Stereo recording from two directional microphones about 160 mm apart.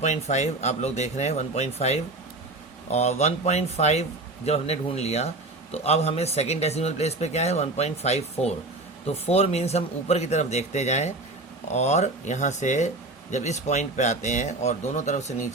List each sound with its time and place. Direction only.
0.0 s speech: 45° left (ahead or behind)